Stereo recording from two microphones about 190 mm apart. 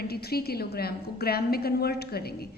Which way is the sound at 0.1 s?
55° left (ahead or behind).